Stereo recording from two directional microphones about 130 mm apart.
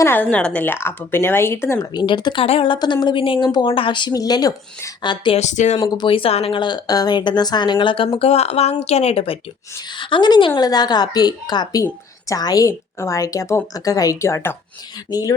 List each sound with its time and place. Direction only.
0.0 s speech: 15° left (ahead or behind)
1.9 s speech: 35° left (ahead or behind)
5.4 s speech: 65° left (ahead or behind)
5.8 s a woman's voice: 35° left (ahead or behind)